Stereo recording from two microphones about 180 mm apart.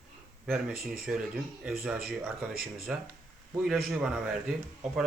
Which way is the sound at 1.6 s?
5° right (ahead or behind).